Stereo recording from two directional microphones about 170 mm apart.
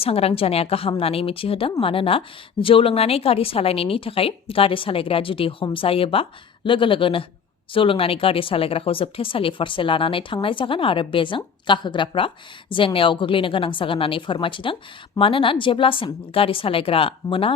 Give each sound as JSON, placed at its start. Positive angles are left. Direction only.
{"t": 0.0, "sound": "a woman's voice", "side_deg": 35}